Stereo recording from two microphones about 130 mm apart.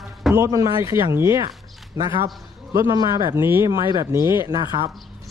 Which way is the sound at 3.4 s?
15° right (ahead or behind).